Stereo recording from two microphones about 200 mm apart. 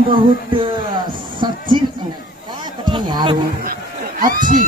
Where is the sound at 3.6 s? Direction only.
45° right (ahead or behind).